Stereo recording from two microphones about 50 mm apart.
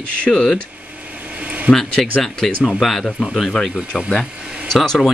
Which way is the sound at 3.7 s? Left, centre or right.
Left.